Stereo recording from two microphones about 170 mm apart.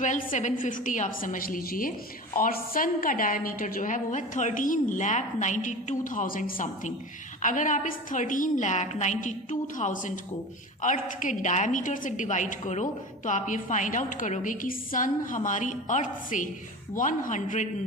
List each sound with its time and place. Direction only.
0.0 s a woman's voice: 50° left (ahead or behind)